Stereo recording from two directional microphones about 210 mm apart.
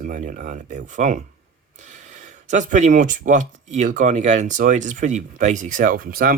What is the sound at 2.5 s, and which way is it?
Speech, 35° right (ahead or behind).